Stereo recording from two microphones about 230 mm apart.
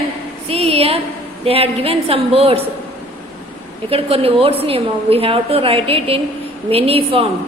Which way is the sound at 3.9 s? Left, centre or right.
Right.